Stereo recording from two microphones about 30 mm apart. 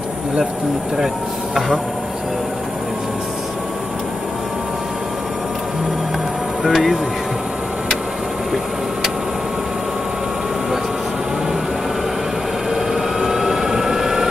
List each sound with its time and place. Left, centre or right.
0.9 s speech: centre
6.6 s speech: centre
12.9 s vehicle: centre